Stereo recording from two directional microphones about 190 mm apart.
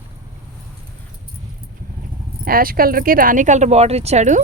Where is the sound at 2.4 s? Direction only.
50° right (ahead or behind).